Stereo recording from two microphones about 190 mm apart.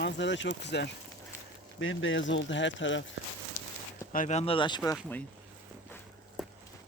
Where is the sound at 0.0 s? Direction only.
70° left (ahead or behind).